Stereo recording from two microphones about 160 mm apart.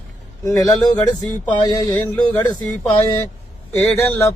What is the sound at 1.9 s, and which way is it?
Speech, 10° left (ahead or behind).